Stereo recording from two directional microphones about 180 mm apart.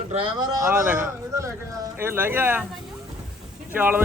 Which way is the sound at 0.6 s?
10° right (ahead or behind).